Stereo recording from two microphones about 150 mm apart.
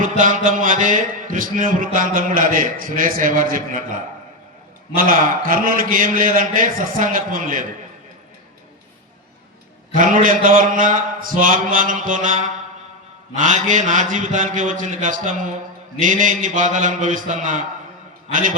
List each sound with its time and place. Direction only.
0.2 s a man's voice: 60° right (ahead or behind)
9.9 s a man's voice: 65° right (ahead or behind)